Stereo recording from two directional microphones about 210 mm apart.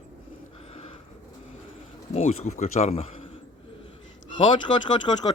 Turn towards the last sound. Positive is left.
turn(degrees=20)  # may be behind; listen again after turning